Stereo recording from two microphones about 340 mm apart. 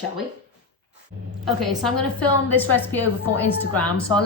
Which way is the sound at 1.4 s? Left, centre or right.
Centre.